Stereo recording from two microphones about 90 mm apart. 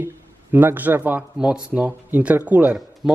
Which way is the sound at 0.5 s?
20° right (ahead or behind).